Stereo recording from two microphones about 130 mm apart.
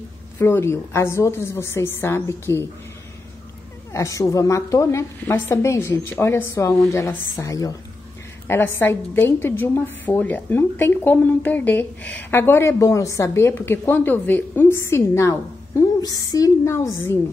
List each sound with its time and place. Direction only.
0.4 s a woman's voice: 20° left (ahead or behind)
3.9 s a woman's voice: 25° left (ahead or behind)